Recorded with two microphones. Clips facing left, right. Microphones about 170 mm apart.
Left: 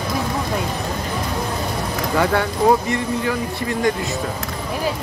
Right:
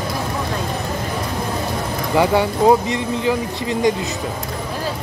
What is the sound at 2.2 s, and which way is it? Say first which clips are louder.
Speech: right 3 dB; 15° right (ahead or behind).